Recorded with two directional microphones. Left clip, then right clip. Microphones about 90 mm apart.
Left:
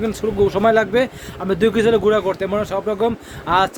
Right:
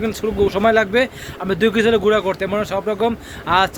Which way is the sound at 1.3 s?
45° left (ahead or behind).